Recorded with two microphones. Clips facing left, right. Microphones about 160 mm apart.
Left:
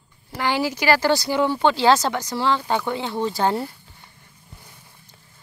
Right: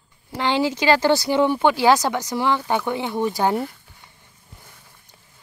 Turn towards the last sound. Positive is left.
turn(degrees=-15)  # may be behind; listen again after turning